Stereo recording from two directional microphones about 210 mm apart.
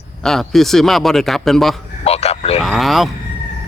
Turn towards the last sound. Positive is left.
turn(degrees=0)  # may be behind; listen again after turning